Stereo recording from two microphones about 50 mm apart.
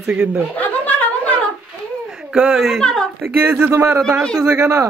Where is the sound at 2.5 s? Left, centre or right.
Centre.